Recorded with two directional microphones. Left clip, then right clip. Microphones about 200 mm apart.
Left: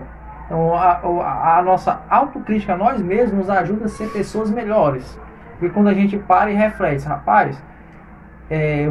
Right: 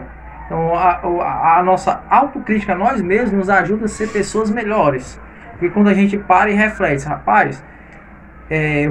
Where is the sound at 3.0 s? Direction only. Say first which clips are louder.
Right 1 dB; 15° left (ahead or behind).